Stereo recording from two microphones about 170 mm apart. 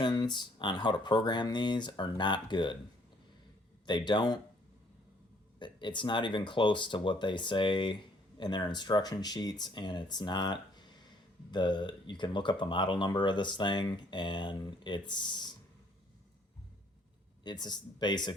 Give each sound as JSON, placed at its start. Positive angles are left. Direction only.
{"t": 0.0, "sound": "speech", "side_deg": 25}
{"t": 3.8, "sound": "speech", "side_deg": 25}
{"t": 5.5, "sound": "speech", "side_deg": 30}
{"t": 17.4, "sound": "speech", "side_deg": 25}